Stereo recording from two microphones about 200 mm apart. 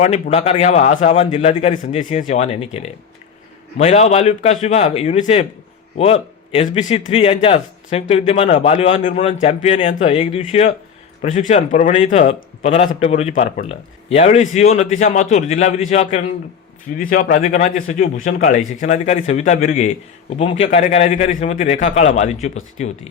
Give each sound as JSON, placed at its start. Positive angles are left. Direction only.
{"t": 0.0, "sound": "a man's voice", "side_deg": 35}